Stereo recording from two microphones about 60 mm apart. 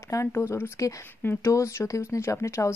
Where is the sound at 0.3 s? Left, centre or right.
Left.